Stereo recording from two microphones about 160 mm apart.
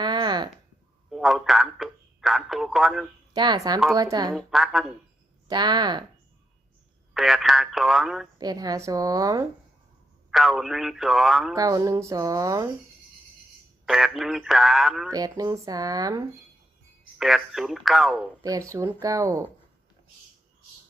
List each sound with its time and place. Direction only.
0.0 s a sound: 25° right (ahead or behind)
1.1 s speech: centre (ahead or behind)
3.3 s speech: 25° right (ahead or behind)
4.4 s speech: centre (ahead or behind)
5.5 s speech: 25° right (ahead or behind)
7.1 s speech: centre (ahead or behind)
8.4 s speech: 25° right (ahead or behind)
10.3 s speech: centre (ahead or behind)
11.5 s speech: 20° right (ahead or behind)
13.8 s speech: centre (ahead or behind)
15.1 s speech: 25° right (ahead or behind)
17.2 s speech: centre (ahead or behind)
18.4 s speech: 20° right (ahead or behind)